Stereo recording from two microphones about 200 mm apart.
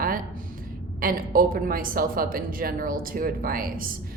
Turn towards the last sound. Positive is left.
turn(degrees=-45)  # may be behind; listen again after turning